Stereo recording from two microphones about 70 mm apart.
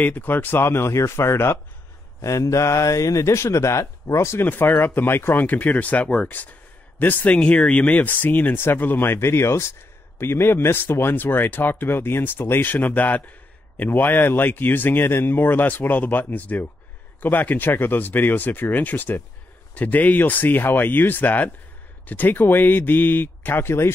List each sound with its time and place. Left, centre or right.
0.0 s speech: left
2.2 s speech: left